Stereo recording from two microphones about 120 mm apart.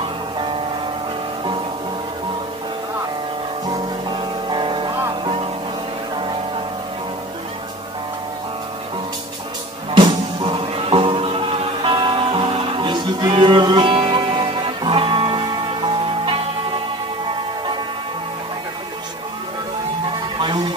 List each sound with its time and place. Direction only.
3.6 s music: 35° right (ahead or behind)
9.8 s music: 40° right (ahead or behind)
20.3 s music: 40° right (ahead or behind)